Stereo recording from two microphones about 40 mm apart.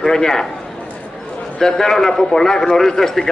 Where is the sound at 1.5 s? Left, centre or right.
Centre.